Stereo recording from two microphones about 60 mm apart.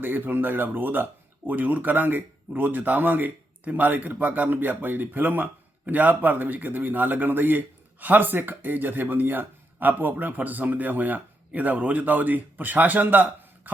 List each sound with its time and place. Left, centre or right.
0.0 s speech: right